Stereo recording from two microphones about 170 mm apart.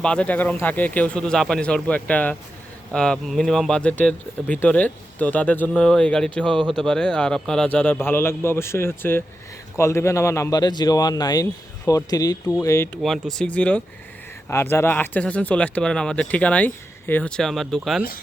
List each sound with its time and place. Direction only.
0.0 s a man's voice: 5° left (ahead or behind)
13.0 s speech: centre (ahead or behind)